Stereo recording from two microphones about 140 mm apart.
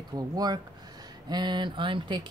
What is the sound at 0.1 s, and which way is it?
Speech, 30° right (ahead or behind).